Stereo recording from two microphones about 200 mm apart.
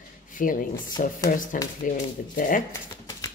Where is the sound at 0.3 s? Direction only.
40° left (ahead or behind).